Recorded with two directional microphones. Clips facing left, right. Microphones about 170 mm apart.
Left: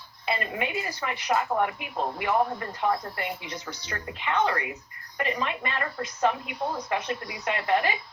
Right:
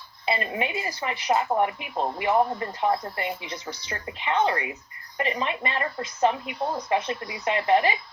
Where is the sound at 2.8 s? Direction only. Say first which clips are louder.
Right 2 dB; 20° right (ahead or behind).